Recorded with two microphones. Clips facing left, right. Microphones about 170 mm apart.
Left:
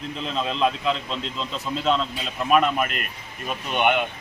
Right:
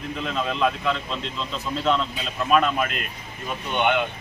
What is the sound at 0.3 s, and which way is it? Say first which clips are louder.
Speech: even; 25° left (ahead or behind).